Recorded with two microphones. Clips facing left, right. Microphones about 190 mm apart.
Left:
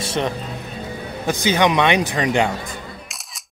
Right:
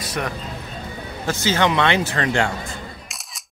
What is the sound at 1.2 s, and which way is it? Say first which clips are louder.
Speech: left 2 dB; 15° left (ahead or behind).